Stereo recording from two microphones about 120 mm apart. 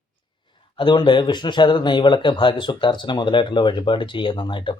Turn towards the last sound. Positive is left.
turn(degrees=40)  # may be behind; listen again after turning